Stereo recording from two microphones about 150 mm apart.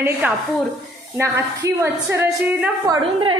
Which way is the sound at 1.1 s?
15° right (ahead or behind).